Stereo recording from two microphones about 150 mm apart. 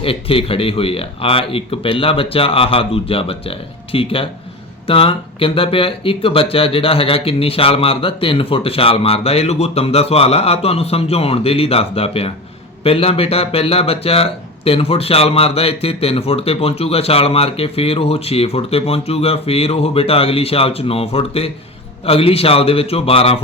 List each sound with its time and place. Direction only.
0.0 s speech: 40° left (ahead or behind)